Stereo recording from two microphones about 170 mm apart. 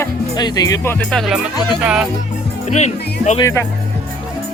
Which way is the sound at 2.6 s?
45° left (ahead or behind).